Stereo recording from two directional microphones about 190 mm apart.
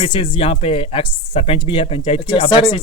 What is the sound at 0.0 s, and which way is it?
Speech, 25° left (ahead or behind).